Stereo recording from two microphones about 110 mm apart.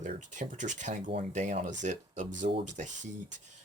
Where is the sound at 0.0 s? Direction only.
90° right.